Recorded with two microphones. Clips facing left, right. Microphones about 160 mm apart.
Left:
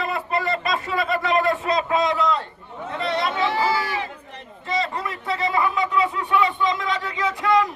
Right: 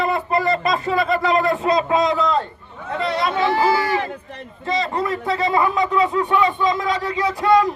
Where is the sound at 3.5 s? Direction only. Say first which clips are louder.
Right 5 dB; 50° right (ahead or behind).